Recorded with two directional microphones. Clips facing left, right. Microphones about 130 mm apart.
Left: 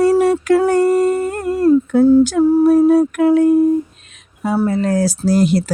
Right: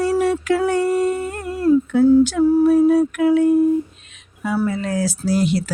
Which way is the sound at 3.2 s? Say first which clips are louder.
Left 3 dB; 40° left (ahead or behind).